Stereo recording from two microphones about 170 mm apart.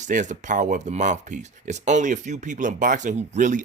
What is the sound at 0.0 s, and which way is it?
Speech, 45° right (ahead or behind).